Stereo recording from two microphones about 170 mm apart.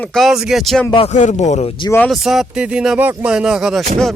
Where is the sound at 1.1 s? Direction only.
45° left (ahead or behind).